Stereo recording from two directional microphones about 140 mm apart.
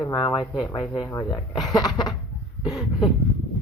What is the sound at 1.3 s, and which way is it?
Speech, centre (ahead or behind).